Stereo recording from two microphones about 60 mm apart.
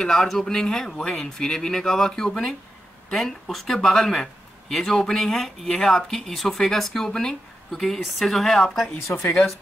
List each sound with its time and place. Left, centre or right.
0.0 s speech: centre
9.0 s speech: left